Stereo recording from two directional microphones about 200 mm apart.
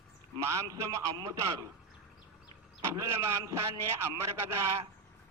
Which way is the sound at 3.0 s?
15° right (ahead or behind).